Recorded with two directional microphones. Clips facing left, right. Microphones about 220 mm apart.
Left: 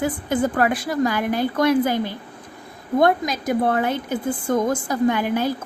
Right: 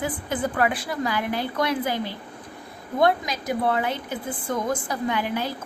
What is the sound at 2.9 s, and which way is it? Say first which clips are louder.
Speech: left 4 dB; 50° left (ahead or behind).